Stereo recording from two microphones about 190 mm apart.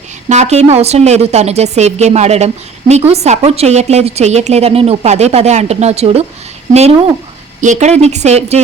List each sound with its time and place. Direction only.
0.3 s a woman's voice: 35° right (ahead or behind)
7.6 s a woman's voice: 40° right (ahead or behind)